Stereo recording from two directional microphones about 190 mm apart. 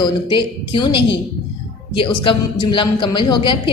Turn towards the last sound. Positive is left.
turn(degrees=25)  # may be behind; listen again after turning